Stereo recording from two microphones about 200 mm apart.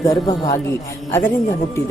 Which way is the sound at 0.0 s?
15° left (ahead or behind).